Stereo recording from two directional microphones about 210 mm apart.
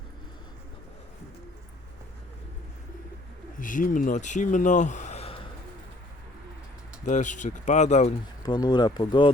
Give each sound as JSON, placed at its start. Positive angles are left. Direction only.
{"t": 3.6, "sound": "speech", "side_deg": 40}
{"t": 7.0, "sound": "speech", "side_deg": 35}
{"t": 8.4, "sound": "speech", "side_deg": 20}